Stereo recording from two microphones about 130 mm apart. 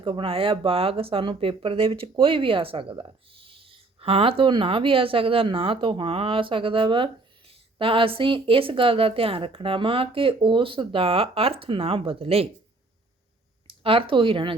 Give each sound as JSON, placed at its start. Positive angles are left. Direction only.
{"t": 0.0, "sound": "speech", "side_deg": -40}
{"t": 13.7, "sound": "speech", "side_deg": -45}